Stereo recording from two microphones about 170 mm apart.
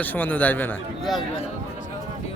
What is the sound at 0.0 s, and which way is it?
Speech, 10° left (ahead or behind).